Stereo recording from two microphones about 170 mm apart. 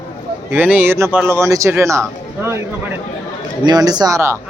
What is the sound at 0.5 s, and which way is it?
Speech, 10° right (ahead or behind).